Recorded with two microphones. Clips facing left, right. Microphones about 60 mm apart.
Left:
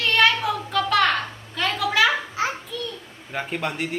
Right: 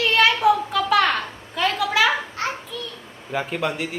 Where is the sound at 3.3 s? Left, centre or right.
Centre.